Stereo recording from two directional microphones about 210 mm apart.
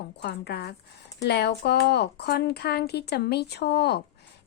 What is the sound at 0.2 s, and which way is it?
A woman's voice, 50° left (ahead or behind).